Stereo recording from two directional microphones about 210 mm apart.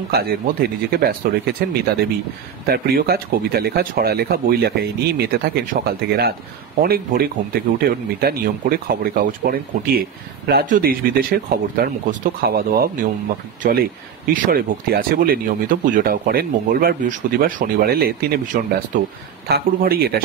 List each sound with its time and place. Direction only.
0.1 s speech: 45° right (ahead or behind)